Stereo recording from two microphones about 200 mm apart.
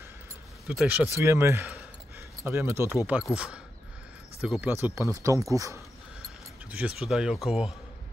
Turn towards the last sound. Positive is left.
turn(degrees=0)  # may be behind; listen again after turning